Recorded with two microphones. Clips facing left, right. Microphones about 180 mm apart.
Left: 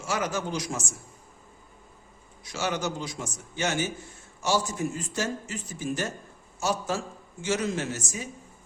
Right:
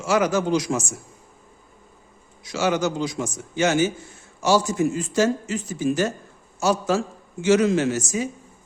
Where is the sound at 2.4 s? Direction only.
90° right.